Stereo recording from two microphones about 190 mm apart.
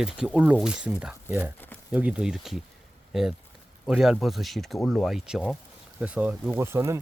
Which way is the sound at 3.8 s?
Centre (ahead or behind).